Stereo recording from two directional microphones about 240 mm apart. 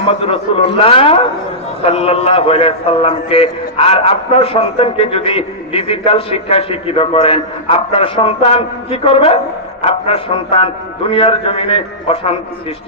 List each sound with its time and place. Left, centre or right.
0.0 s a man's voice: left